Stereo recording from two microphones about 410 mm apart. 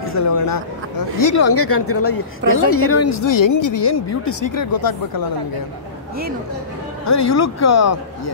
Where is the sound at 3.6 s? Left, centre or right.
Left.